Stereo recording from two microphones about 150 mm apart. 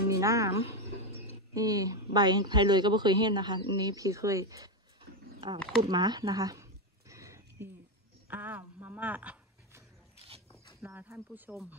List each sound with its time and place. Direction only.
0.1 s a woman's voice: 20° right (ahead or behind)
5.8 s a sound: 30° right (ahead or behind)
8.3 s dog: 10° right (ahead or behind)
10.5 s speech: 15° right (ahead or behind)